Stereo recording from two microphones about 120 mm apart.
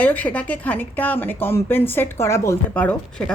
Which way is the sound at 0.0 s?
15° left (ahead or behind).